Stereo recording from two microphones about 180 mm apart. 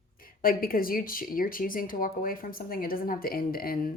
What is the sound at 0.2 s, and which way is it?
Speech, 55° left (ahead or behind).